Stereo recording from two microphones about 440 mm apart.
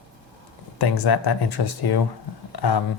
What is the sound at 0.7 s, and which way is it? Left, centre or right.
Speech, left.